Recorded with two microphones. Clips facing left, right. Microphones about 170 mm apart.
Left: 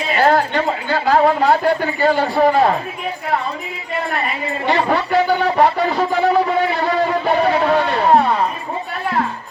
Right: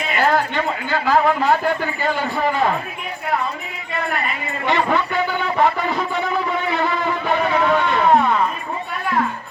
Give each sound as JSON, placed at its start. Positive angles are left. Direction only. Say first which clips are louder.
{"t": 0.0, "sound": "speech", "louder": "left 3 dB", "side_deg": 30}
{"t": 4.6, "sound": "speech", "louder": "left 1 dB", "side_deg": 35}
{"t": 6.8, "sound": "music", "louder": "left 4 dB", "side_deg": 35}